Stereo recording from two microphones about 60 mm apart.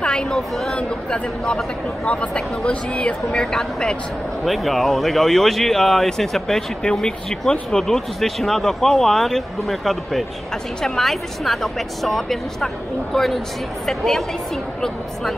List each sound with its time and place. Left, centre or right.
0.0 s a sound: centre
0.7 s speech: centre
3.3 s speech: centre